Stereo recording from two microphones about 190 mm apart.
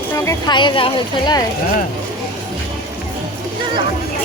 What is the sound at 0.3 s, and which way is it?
Speech, 25° left (ahead or behind).